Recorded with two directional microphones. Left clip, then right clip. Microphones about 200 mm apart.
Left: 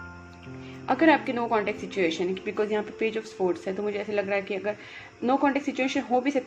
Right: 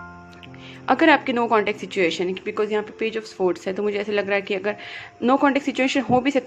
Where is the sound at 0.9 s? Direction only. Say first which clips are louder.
Right 5 dB; 30° right (ahead or behind).